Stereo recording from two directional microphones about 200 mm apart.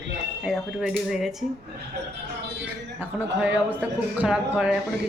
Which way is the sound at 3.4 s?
5° right (ahead or behind).